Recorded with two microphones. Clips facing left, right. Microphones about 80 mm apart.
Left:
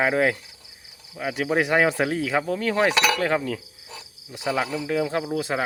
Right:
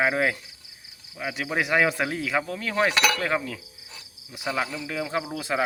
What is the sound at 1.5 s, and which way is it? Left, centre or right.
Speech, left.